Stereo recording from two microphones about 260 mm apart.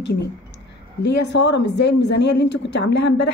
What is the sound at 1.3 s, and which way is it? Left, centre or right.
A woman's voice, left.